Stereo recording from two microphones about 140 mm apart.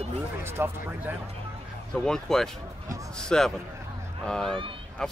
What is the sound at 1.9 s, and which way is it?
Speech, 5° left (ahead or behind).